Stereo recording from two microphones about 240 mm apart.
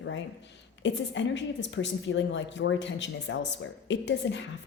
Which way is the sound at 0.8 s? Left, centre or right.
Left.